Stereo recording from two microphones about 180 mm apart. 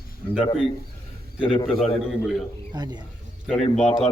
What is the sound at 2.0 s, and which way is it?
Speech, centre (ahead or behind).